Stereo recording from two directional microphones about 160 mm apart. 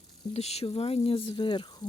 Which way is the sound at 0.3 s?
40° left (ahead or behind).